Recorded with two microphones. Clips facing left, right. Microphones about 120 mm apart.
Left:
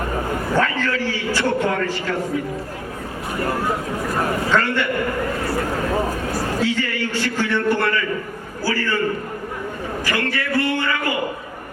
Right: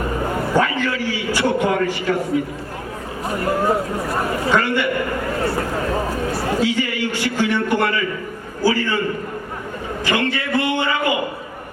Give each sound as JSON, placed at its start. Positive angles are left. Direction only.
{"t": 0.5, "sound": "a man's voice", "side_deg": -15}
{"t": 4.5, "sound": "a man's voice", "side_deg": -10}
{"t": 6.6, "sound": "a man's voice", "side_deg": -15}
{"t": 10.1, "sound": "speech", "side_deg": -20}